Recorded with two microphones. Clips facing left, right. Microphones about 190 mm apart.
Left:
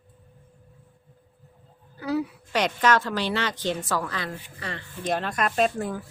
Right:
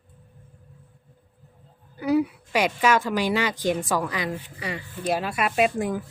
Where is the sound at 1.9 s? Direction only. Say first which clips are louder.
Right 5 dB; 15° right (ahead or behind).